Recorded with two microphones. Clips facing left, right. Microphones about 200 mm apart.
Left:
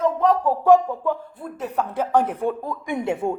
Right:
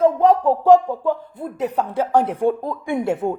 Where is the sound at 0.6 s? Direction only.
15° right (ahead or behind).